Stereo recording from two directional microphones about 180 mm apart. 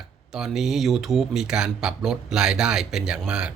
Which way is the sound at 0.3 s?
Centre (ahead or behind).